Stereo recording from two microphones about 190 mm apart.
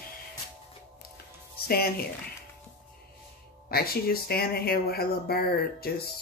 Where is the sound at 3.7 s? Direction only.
55° left (ahead or behind).